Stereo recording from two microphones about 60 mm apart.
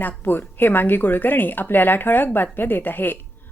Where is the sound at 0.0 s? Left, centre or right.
Left.